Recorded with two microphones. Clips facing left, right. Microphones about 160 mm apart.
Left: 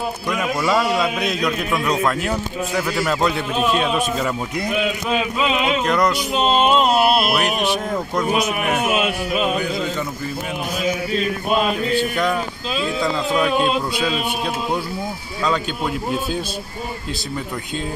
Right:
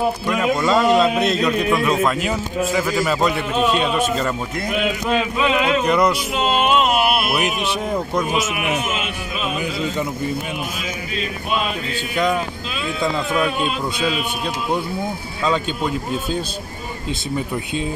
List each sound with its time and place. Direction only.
0.7 s a man's voice: 5° left (ahead or behind)
3.7 s speech: 5° left (ahead or behind)
5.4 s a man's voice: 20° left (ahead or behind)
5.9 s speech: centre (ahead or behind)
6.3 s a sound: 25° left (ahead or behind)
7.9 s speech: 5° right (ahead or behind)
8.6 s a man's voice: 60° left (ahead or behind)
15.4 s speech: centre (ahead or behind)